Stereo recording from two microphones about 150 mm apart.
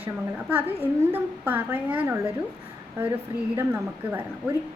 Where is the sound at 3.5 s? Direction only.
10° right (ahead or behind).